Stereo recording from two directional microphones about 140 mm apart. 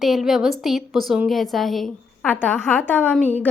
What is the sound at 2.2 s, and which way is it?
A woman's voice, 15° left (ahead or behind).